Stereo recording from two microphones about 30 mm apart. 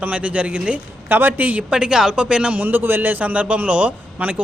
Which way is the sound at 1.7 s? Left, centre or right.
Right.